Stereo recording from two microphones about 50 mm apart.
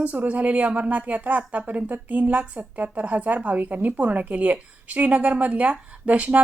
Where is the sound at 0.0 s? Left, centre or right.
Right.